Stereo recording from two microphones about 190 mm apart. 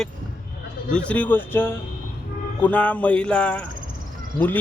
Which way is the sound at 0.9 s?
5° left (ahead or behind).